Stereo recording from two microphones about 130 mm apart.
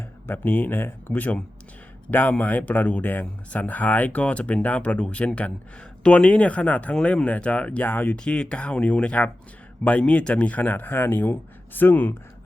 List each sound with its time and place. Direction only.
0.3 s speech: 15° left (ahead or behind)